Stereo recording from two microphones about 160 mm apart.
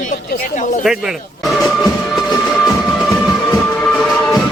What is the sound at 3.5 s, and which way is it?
Music, 15° left (ahead or behind).